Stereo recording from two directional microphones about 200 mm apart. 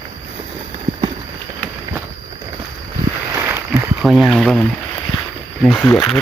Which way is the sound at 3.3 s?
10° right (ahead or behind).